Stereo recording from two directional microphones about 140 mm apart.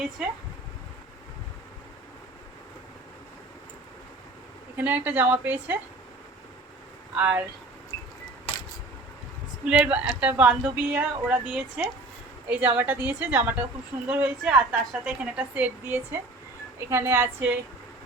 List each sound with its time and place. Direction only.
0.2 s speech: 5° right (ahead or behind)
4.8 s speech: 15° right (ahead or behind)
7.2 s speech: 10° right (ahead or behind)
9.6 s speech: 10° right (ahead or behind)